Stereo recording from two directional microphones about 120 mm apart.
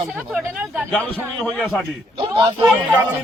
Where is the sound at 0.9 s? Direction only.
10° left (ahead or behind).